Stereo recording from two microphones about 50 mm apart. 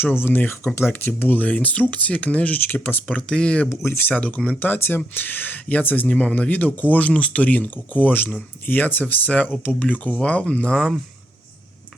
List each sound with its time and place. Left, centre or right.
0.0 s speech: left
2.6 s speech: left
3.1 s speech: left
3.7 s speech: left
4.1 s speech: left
4.6 s speech: left
6.1 s speech: left